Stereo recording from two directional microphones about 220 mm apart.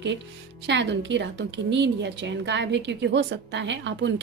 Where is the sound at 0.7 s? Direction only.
55° right (ahead or behind).